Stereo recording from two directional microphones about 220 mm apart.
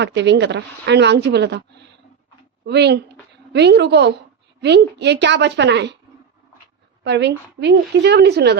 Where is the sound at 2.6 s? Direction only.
50° right (ahead or behind).